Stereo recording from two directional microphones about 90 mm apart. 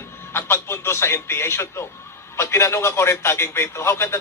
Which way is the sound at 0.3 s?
30° left (ahead or behind).